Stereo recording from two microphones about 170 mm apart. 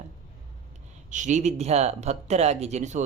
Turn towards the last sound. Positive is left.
turn(degrees=-45)  # may be behind; listen again after turning